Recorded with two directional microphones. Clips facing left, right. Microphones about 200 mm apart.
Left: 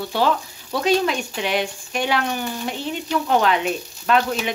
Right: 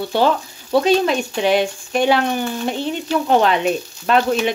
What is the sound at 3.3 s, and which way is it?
Speech, 25° right (ahead or behind).